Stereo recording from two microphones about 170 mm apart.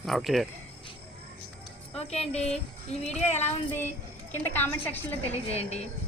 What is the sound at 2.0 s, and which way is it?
Speech, 40° left (ahead or behind).